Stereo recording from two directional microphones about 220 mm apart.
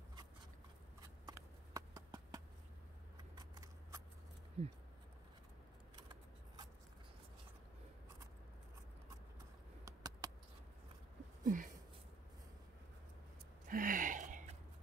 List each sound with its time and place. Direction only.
1.2 s clip-clop: 15° right (ahead or behind)
3.3 s shuffling cards: 15° right (ahead or behind)
4.6 s speech: 25° right (ahead or behind)
6.0 s scissors: 20° right (ahead or behind)
9.8 s computer keyboard: 15° right (ahead or behind)
11.4 s a sound: 35° right (ahead or behind)
13.7 s gasp: 40° right (ahead or behind)